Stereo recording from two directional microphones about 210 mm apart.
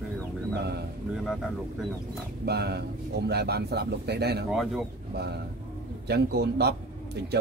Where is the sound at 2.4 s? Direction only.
50° right (ahead or behind).